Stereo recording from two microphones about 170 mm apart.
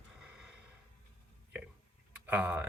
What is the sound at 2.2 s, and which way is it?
Speech, 10° right (ahead or behind).